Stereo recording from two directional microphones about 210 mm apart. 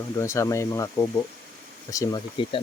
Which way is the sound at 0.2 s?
15° left (ahead or behind).